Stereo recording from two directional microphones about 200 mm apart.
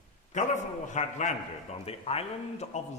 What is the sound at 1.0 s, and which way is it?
A man's voice, 35° left (ahead or behind).